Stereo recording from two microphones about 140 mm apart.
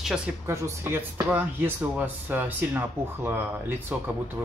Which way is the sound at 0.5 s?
20° right (ahead or behind).